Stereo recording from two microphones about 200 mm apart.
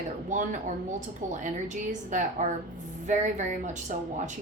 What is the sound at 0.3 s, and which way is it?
Speech, 40° right (ahead or behind).